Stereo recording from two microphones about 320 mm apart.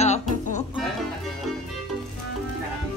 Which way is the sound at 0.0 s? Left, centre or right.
Left.